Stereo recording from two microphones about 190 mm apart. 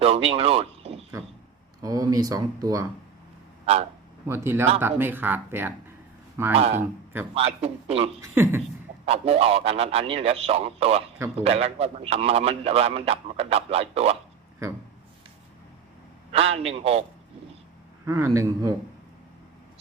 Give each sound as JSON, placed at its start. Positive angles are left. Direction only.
{"t": 0.0, "sound": "speech", "side_deg": -30}
{"t": 1.8, "sound": "speech", "side_deg": -20}
{"t": 3.7, "sound": "a man's voice", "side_deg": -30}
{"t": 4.3, "sound": "speech", "side_deg": -15}
{"t": 6.6, "sound": "a man's voice", "side_deg": -35}
{"t": 8.2, "sound": "speech", "side_deg": -10}
{"t": 9.0, "sound": "a man's voice", "side_deg": -30}
{"t": 16.3, "sound": "a man's voice", "side_deg": -30}
{"t": 18.0, "sound": "a man's voice", "side_deg": -15}